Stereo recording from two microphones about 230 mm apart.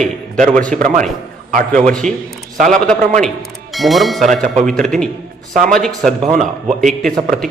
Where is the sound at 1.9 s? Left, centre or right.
Centre.